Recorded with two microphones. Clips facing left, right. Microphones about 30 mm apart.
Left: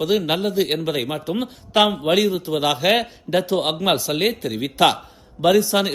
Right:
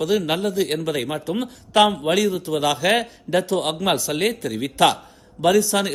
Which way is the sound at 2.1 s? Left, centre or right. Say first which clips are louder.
Left 1 dB; left.